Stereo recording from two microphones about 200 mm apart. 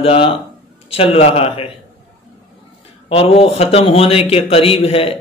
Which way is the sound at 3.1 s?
30° left (ahead or behind).